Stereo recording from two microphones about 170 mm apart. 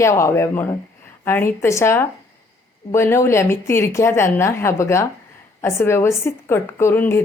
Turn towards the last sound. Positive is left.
turn(degrees=15)  # may be behind; listen again after turning